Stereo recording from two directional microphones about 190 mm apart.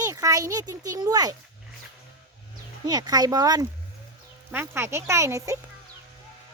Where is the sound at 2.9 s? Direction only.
20° right (ahead or behind).